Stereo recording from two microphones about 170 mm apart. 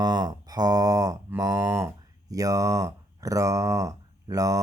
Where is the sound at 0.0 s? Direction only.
25° right (ahead or behind).